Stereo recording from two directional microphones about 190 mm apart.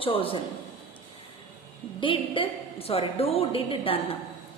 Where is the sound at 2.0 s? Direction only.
25° left (ahead or behind).